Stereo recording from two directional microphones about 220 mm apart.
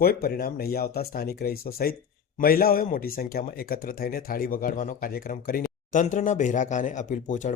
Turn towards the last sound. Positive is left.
turn(degrees=35)  # may be behind; listen again after turning